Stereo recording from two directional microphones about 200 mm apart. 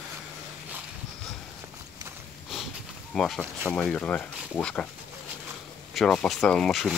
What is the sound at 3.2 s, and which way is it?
Speech, 5° left (ahead or behind).